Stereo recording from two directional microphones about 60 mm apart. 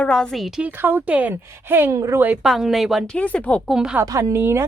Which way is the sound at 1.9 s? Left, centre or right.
Right.